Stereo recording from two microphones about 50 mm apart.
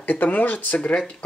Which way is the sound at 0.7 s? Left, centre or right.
Left.